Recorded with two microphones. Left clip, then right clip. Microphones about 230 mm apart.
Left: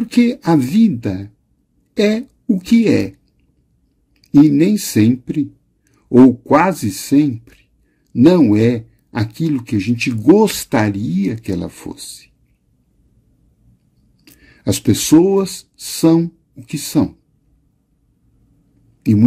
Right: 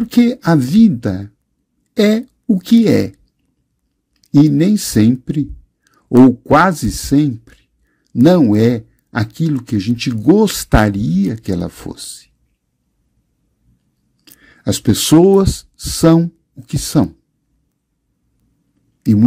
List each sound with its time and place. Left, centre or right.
0.2 s speech: right
4.6 s speech: right
14.2 s speech: right